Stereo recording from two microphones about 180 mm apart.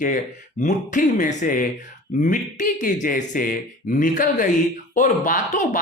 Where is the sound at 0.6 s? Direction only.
45° left (ahead or behind).